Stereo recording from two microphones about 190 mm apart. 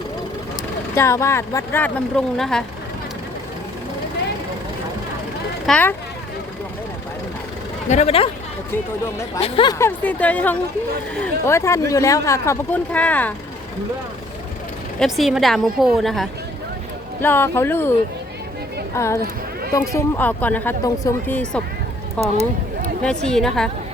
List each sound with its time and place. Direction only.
0.9 s speech: 15° left (ahead or behind)
5.6 s speech: 5° left (ahead or behind)
7.9 s speech: 35° left (ahead or behind)
9.4 s speech: 25° left (ahead or behind)
9.7 s speech: 10° left (ahead or behind)
14.9 s a woman's voice: centre (ahead or behind)
17.2 s speech: 10° left (ahead or behind)
18.9 s speech: 15° left (ahead or behind)
23.0 s a woman's voice: 5° left (ahead or behind)